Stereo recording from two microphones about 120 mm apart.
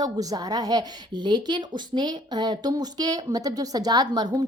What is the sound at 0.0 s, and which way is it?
A woman's voice, 30° right (ahead or behind).